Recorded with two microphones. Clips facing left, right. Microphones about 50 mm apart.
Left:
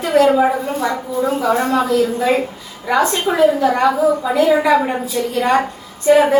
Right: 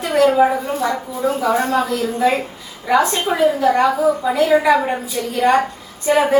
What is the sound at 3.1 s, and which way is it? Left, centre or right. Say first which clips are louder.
A woman's voice: left 2 dB; centre.